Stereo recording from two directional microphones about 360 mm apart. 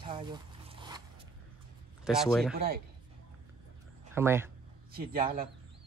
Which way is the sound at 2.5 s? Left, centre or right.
Right.